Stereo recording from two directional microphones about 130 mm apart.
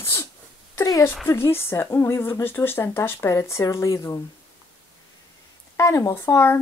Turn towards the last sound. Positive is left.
turn(degrees=20)  # may be behind; listen again after turning